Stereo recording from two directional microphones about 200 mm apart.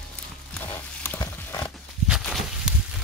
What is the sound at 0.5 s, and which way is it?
Roaring cats, 10° left (ahead or behind).